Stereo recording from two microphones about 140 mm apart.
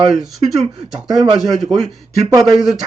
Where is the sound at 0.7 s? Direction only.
5° right (ahead or behind).